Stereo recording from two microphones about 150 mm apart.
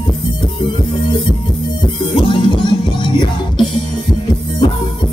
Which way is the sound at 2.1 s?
30° left (ahead or behind).